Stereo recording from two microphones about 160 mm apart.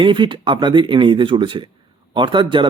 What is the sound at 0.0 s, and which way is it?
Speech, 30° right (ahead or behind).